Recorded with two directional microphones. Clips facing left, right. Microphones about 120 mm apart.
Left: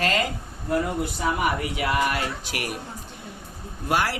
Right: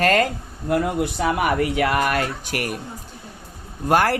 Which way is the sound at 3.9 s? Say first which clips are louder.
Right 6 dB; 50° right (ahead or behind).